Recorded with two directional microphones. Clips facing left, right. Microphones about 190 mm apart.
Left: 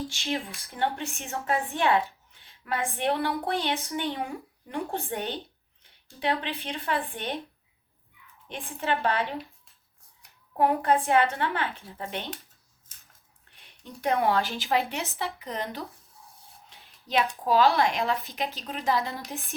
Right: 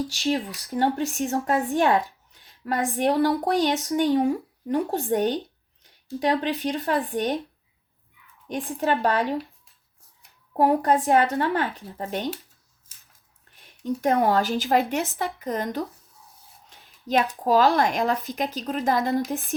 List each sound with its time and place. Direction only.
0.1 s a woman's voice: 40° right (ahead or behind)
8.4 s a woman's voice: 40° right (ahead or behind)
10.6 s a woman's voice: 40° right (ahead or behind)
13.8 s a woman's voice: 45° right (ahead or behind)
16.6 s a sound: 45° right (ahead or behind)
17.4 s a woman's voice: 45° right (ahead or behind)